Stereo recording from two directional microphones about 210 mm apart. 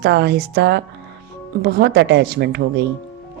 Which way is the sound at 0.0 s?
50° right (ahead or behind).